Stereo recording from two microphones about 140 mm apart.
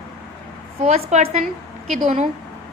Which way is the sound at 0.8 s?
55° right (ahead or behind).